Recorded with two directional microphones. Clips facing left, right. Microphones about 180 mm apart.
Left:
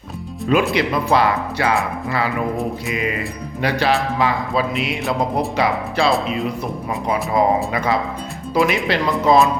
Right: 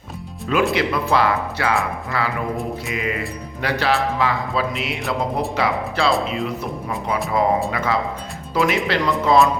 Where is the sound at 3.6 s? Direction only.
15° left (ahead or behind).